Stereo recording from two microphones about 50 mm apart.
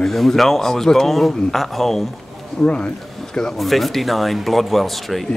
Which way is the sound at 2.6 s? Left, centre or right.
Centre.